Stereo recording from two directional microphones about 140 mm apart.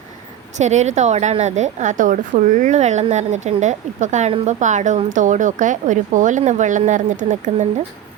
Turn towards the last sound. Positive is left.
turn(degrees=-65)  # may be behind; listen again after turning